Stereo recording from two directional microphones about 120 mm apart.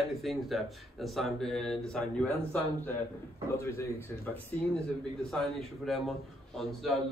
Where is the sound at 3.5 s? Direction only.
25° left (ahead or behind).